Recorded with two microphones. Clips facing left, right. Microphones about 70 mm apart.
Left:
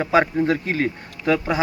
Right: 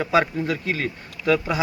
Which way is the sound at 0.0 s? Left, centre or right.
Left.